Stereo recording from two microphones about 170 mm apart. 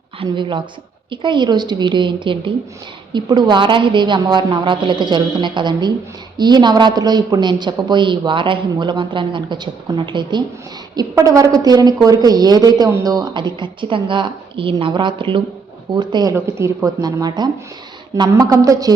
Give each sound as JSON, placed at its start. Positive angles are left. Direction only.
{"t": 0.2, "sound": "a woman's voice", "side_deg": -30}